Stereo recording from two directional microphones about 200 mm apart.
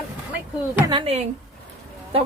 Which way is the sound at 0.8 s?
25° right (ahead or behind).